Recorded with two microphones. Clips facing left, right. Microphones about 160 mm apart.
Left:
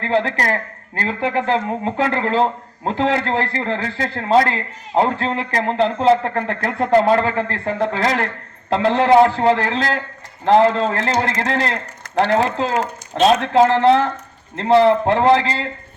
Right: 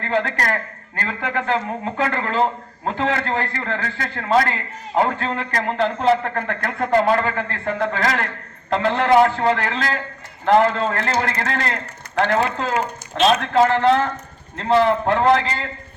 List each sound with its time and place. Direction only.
0.1 s a man's voice: 30° left (ahead or behind)
14.8 s a man's voice: 30° left (ahead or behind)